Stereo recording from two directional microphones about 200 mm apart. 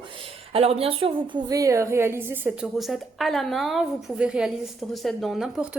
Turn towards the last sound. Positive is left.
turn(degrees=0)  # may be behind; listen again after turning